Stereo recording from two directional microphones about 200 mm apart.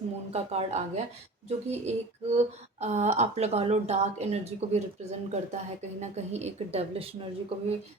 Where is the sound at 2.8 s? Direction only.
35° right (ahead or behind).